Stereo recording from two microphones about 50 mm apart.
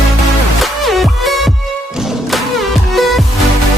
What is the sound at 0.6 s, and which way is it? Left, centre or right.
Music, centre.